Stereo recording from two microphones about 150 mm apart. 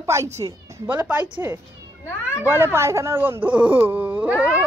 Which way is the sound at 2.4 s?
15° right (ahead or behind).